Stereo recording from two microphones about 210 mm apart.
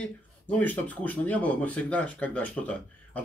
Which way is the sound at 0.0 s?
5° left (ahead or behind).